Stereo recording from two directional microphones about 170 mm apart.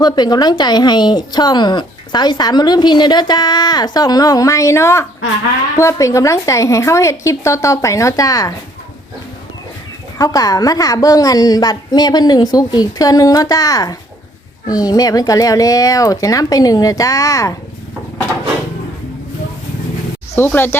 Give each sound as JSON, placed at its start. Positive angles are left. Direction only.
{"t": 0.0, "sound": "a woman's voice", "side_deg": 25}
{"t": 10.2, "sound": "a woman's voice", "side_deg": 20}
{"t": 20.3, "sound": "a woman's voice", "side_deg": 10}